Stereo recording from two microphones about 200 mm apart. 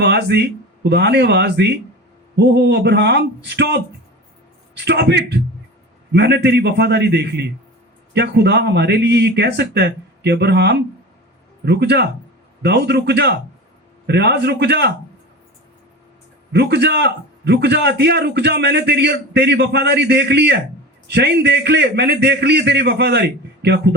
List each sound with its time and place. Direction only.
0.0 s a man's voice: 55° right (ahead or behind)
4.9 s a man's voice: 55° right (ahead or behind)
16.5 s a man's voice: 55° right (ahead or behind)